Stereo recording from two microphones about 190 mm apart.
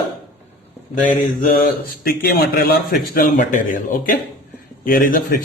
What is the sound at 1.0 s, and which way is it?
Speech, 45° left (ahead or behind).